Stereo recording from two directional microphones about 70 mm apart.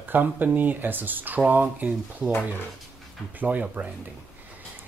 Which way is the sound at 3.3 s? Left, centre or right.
Right.